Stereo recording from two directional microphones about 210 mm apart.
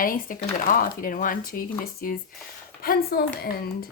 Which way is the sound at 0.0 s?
40° left (ahead or behind).